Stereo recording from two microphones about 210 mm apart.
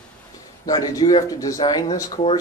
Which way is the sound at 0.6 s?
15° left (ahead or behind).